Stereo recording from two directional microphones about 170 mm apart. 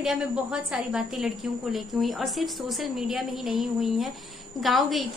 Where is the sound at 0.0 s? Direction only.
5° right (ahead or behind).